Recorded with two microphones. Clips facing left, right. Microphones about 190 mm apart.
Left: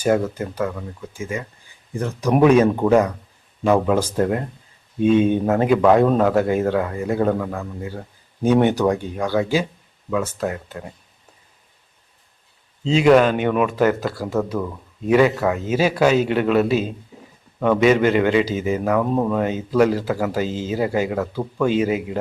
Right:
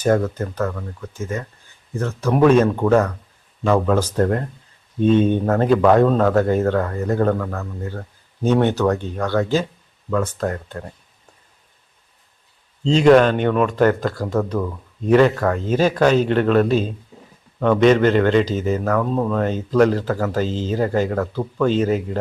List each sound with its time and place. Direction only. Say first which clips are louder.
0.0 s speech: right 1 dB; 10° left (ahead or behind)
12.8 s speech: right 2 dB; 5° left (ahead or behind)